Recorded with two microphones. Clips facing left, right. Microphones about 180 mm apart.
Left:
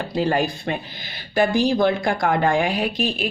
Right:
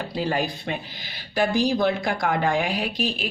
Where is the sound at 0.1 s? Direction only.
50° left (ahead or behind).